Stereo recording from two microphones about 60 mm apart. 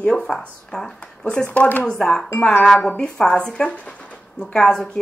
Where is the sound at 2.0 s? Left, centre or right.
Centre.